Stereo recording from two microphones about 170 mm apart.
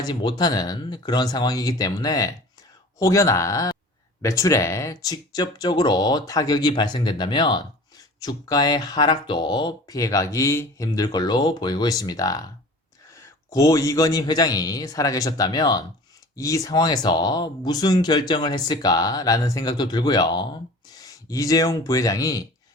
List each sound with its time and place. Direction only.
0.0 s speech: 25° left (ahead or behind)